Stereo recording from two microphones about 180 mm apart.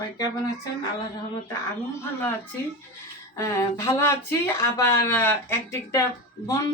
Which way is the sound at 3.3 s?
15° left (ahead or behind).